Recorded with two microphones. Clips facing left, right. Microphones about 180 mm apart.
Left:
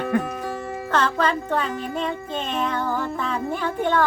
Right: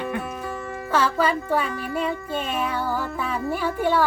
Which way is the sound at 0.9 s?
10° right (ahead or behind).